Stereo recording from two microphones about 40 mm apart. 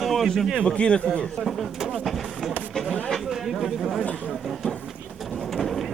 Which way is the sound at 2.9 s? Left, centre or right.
Left.